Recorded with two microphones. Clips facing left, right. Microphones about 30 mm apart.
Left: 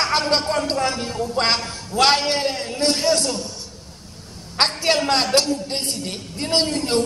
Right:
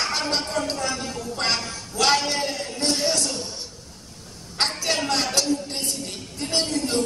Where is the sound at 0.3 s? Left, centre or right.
Left.